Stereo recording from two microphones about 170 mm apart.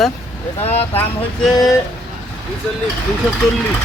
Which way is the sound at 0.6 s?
35° left (ahead or behind).